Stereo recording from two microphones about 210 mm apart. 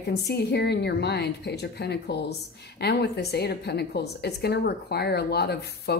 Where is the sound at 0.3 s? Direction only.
50° left (ahead or behind).